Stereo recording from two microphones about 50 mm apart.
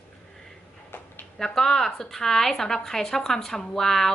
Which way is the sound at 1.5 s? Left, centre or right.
Centre.